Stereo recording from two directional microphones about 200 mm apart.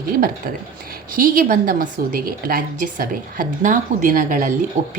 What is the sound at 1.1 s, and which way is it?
A woman's voice, 45° right (ahead or behind).